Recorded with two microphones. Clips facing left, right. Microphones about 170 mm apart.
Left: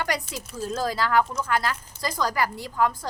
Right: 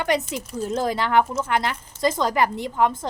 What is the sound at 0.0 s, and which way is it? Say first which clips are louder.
A woman's voice: right 6 dB; 20° right (ahead or behind).